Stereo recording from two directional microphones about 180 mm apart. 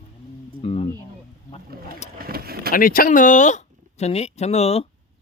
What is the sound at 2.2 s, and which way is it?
Vehicle, 55° right (ahead or behind).